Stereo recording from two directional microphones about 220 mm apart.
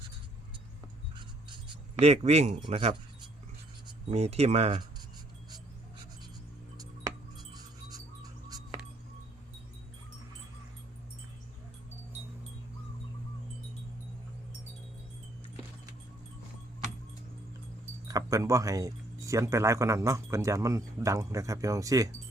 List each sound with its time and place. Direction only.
1.1 s writing: 20° right (ahead or behind)
4.1 s speech: 30° right (ahead or behind)
7.3 s wind chime: 15° right (ahead or behind)
18.1 s speech: 15° right (ahead or behind)